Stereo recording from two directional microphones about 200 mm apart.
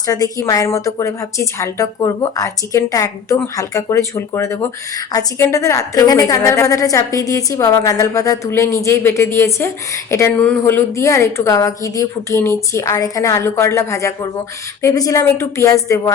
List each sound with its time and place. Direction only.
0.0 s a woman's voice: 15° left (ahead or behind)